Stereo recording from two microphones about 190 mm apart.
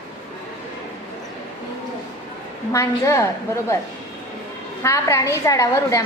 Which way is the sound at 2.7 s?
15° left (ahead or behind).